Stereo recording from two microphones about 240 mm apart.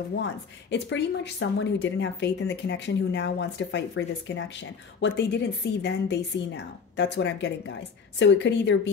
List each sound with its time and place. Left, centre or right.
0.1 s speech: left